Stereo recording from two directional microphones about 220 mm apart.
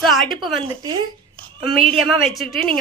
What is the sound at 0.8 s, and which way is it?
A woman's voice, 20° right (ahead or behind).